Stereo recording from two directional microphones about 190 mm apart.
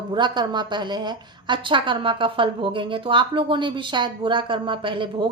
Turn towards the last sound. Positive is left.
turn(degrees=-25)  # may be behind; listen again after turning